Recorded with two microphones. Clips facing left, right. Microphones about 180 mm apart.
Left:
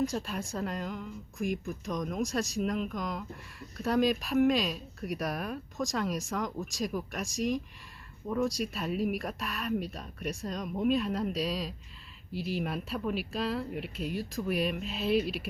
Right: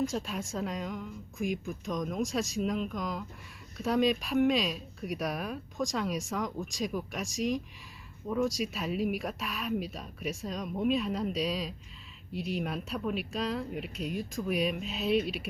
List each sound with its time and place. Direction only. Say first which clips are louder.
0.0 s speech: even; centre (ahead or behind)